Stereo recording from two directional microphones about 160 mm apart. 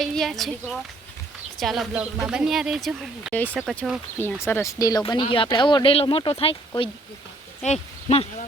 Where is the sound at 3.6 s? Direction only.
Centre (ahead or behind).